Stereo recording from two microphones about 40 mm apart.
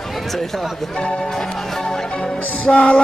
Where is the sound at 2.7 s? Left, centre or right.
Left.